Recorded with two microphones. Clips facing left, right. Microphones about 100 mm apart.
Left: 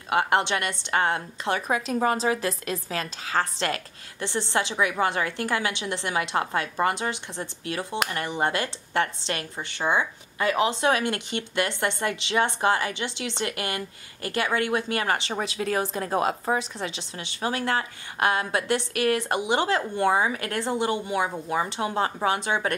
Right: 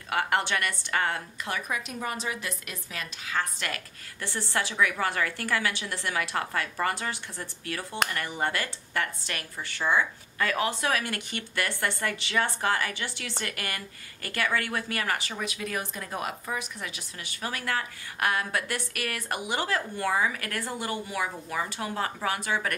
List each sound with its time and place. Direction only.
0.1 s speech: 25° left (ahead or behind)